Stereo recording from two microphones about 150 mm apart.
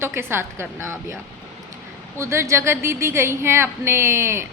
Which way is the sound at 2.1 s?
20° right (ahead or behind).